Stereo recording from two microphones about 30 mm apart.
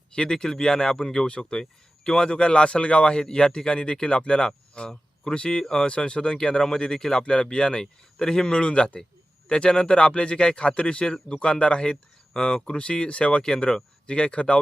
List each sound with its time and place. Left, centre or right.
0.2 s a man's voice: left
8.6 s a man's voice: left
12.8 s a man's voice: left